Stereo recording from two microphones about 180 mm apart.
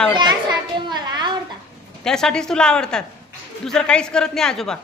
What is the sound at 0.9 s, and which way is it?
Speech, 25° right (ahead or behind).